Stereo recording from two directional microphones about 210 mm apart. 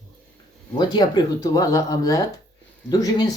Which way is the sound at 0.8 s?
20° left (ahead or behind).